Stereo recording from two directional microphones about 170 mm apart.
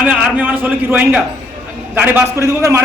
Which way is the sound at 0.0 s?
10° right (ahead or behind).